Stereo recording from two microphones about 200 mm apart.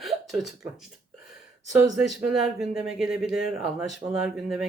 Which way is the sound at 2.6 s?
5° right (ahead or behind).